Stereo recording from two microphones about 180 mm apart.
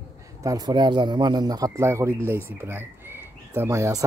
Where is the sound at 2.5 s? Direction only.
10° right (ahead or behind).